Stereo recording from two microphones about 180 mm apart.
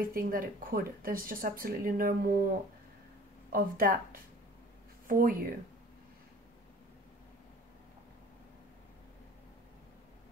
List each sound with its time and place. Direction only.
0.0 s speech: 55° right (ahead or behind)
3.4 s speech: 55° right (ahead or behind)